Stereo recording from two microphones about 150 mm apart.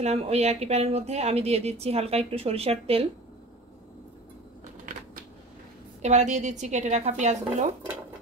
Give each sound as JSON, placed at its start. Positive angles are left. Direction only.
{"t": 0.0, "sound": "a woman's voice", "side_deg": -45}
{"t": 6.0, "sound": "a woman's voice", "side_deg": -50}